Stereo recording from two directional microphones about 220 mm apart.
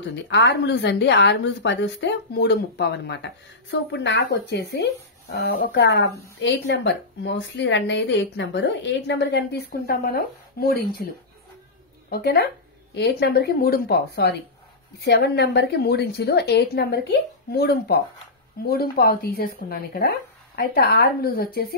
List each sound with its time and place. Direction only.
0.0 s a woman's voice: 55° left (ahead or behind)
12.1 s a woman's voice: 45° left (ahead or behind)